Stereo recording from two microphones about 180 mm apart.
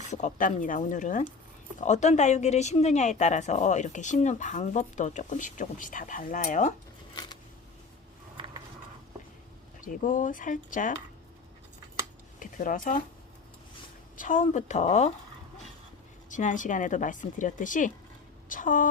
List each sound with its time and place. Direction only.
0.0 s speech: 40° left (ahead or behind)
8.4 s mechanisms: 25° right (ahead or behind)
9.8 s speech: 45° left (ahead or behind)
12.4 s speech: 45° left (ahead or behind)
14.2 s speech: 45° left (ahead or behind)
16.3 s speech: 45° left (ahead or behind)